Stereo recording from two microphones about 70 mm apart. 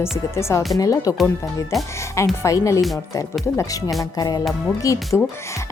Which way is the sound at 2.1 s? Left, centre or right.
Left.